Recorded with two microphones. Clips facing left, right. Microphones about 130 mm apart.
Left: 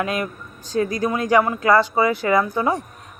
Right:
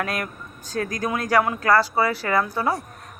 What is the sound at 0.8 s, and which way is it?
Speech, 10° left (ahead or behind).